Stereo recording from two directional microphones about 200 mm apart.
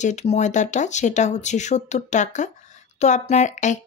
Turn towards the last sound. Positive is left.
turn(degrees=35)  # may be behind; listen again after turning